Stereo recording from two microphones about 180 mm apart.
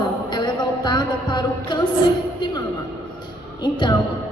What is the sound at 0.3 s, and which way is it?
Music, 25° left (ahead or behind).